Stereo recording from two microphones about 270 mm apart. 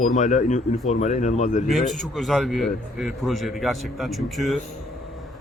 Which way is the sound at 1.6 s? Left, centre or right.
Centre.